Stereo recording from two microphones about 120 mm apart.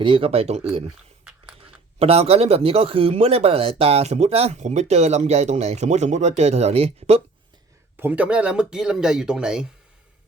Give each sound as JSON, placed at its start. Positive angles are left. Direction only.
{"t": 0.0, "sound": "speech", "side_deg": -45}
{"t": 2.0, "sound": "speech", "side_deg": -55}
{"t": 7.9, "sound": "speech", "side_deg": -15}